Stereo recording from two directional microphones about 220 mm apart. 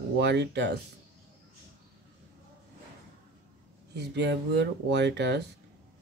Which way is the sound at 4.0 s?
50° right (ahead or behind).